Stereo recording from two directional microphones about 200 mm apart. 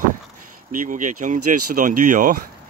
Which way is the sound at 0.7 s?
40° right (ahead or behind).